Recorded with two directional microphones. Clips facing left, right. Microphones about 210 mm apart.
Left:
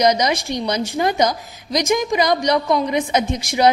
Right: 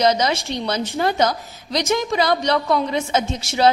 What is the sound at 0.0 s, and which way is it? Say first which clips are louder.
A woman's voice: left 1 dB; 15° left (ahead or behind).